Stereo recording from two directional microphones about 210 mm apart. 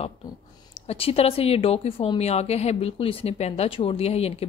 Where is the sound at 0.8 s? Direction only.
30° left (ahead or behind).